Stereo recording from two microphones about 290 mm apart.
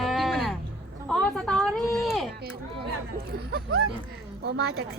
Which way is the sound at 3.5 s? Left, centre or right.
Right.